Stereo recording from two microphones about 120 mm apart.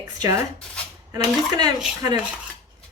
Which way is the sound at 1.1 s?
35° right (ahead or behind).